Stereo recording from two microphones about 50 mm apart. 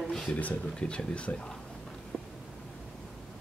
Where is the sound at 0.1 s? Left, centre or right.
Centre.